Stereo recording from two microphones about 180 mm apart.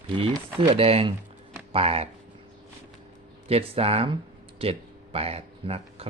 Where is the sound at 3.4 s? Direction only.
35° right (ahead or behind).